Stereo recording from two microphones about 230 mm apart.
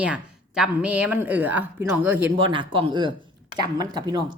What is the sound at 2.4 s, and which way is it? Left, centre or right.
A woman's voice, right.